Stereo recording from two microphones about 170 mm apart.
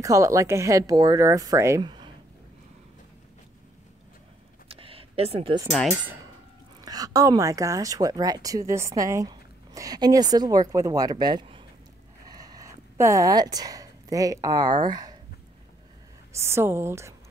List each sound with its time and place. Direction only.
0.0 s speech: 20° right (ahead or behind)
4.6 s a sound: 35° right (ahead or behind)
5.7 s speech: centre (ahead or behind)
6.8 s speech: 20° right (ahead or behind)
16.3 s a woman's voice: 15° right (ahead or behind)